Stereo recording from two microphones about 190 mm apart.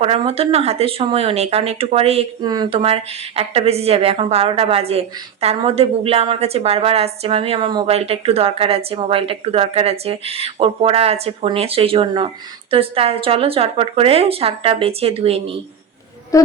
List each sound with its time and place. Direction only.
0.0 s speech: 30° right (ahead or behind)
16.3 s speech: 15° left (ahead or behind)